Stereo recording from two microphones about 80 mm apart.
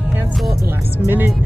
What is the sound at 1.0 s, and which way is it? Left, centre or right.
Speech, right.